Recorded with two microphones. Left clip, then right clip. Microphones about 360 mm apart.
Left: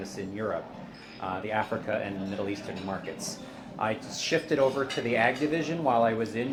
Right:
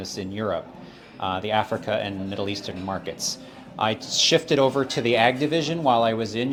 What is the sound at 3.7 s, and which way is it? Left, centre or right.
Speech, right.